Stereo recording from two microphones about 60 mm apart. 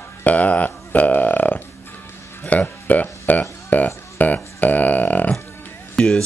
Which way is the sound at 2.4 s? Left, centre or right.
Left.